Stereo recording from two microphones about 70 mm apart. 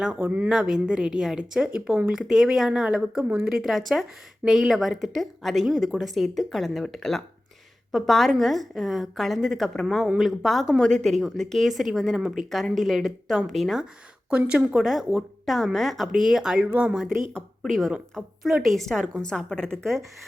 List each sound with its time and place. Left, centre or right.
0.2 s speech: right
0.4 s a woman's voice: centre
3.5 s speech: centre
14.3 s a woman's voice: centre
14.8 s a woman's voice: centre
17.6 s speech: centre